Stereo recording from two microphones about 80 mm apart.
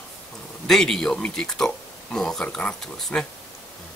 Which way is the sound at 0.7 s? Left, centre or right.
Centre.